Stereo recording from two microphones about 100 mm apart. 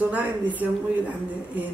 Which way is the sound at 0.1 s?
15° right (ahead or behind).